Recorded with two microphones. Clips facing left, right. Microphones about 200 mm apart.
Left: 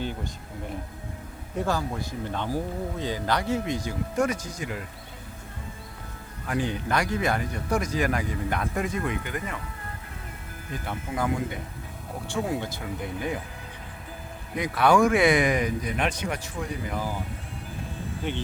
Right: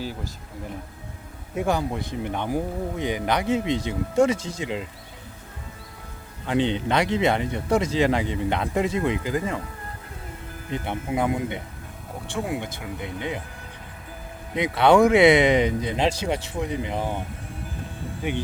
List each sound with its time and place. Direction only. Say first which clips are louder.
1.5 s speech: right 3 dB; 15° right (ahead or behind)
6.4 s speech: right 5 dB; 25° right (ahead or behind)
10.7 s speech: right 5 dB; 20° right (ahead or behind)
12.2 s speech: even; centre (ahead or behind)
12.5 s speech: even; 20° right (ahead or behind)
14.5 s speech: right 4 dB; 25° right (ahead or behind)
18.2 s speech: right 4 dB; 10° right (ahead or behind)